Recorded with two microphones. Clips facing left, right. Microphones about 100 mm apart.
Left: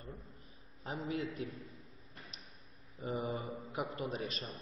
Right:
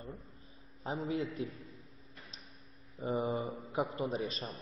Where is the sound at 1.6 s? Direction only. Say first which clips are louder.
Even; centre (ahead or behind).